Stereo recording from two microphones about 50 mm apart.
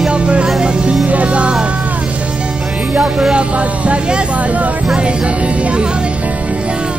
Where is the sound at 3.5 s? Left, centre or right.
Right.